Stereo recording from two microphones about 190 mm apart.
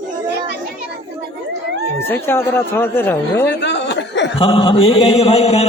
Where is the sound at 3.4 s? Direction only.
65° left (ahead or behind).